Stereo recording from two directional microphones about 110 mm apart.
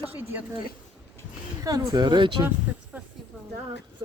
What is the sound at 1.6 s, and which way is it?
Speech, 35° right (ahead or behind).